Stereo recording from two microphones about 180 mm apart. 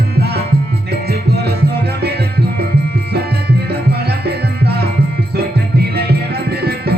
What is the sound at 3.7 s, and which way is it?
Music, 65° right (ahead or behind).